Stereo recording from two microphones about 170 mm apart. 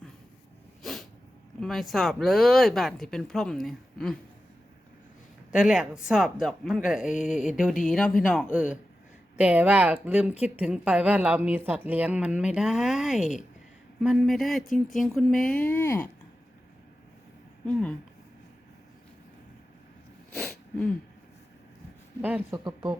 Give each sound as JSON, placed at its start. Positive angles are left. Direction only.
{"t": 0.8, "sound": "sneeze", "side_deg": 0}
{"t": 1.6, "sound": "speech", "side_deg": 0}
{"t": 5.5, "sound": "a woman's voice", "side_deg": -5}
{"t": 15.5, "sound": "speech", "side_deg": 10}
{"t": 17.7, "sound": "speech", "side_deg": 5}
{"t": 20.3, "sound": "wheeze", "side_deg": 0}
{"t": 22.2, "sound": "a woman's voice", "side_deg": -10}
{"t": 22.6, "sound": "speech", "side_deg": -25}